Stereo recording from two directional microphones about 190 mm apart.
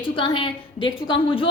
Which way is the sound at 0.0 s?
25° left (ahead or behind).